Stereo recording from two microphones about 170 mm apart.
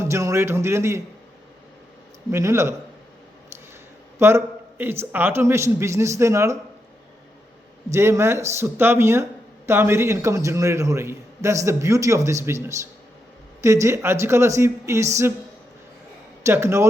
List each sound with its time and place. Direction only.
0.0 s a man's voice: 15° right (ahead or behind)
2.3 s a man's voice: 15° right (ahead or behind)
4.2 s a man's voice: 15° right (ahead or behind)
7.9 s a man's voice: 15° right (ahead or behind)
13.6 s a man's voice: 15° right (ahead or behind)
16.4 s a man's voice: 15° right (ahead or behind)